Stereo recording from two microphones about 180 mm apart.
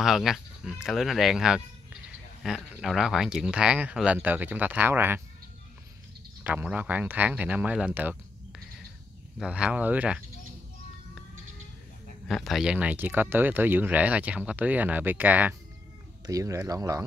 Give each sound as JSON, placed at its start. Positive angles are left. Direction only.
{"t": 0.0, "sound": "speech", "side_deg": 0}
{"t": 6.4, "sound": "speech", "side_deg": -10}
{"t": 9.4, "sound": "speech", "side_deg": -5}
{"t": 12.3, "sound": "speech", "side_deg": 0}